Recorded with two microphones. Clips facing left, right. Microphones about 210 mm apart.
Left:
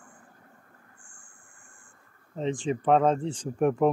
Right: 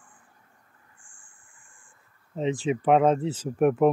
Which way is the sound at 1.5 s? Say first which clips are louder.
Left 3 dB; 55° right (ahead or behind).